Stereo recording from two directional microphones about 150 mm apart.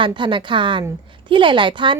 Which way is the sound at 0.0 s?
35° right (ahead or behind).